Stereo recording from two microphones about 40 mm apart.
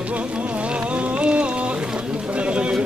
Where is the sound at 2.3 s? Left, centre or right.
Right.